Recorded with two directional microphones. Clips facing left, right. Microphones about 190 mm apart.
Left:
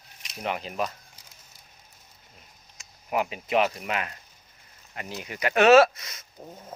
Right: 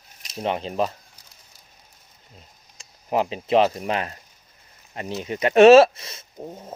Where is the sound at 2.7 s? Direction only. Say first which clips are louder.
Right 4 dB; 30° right (ahead or behind).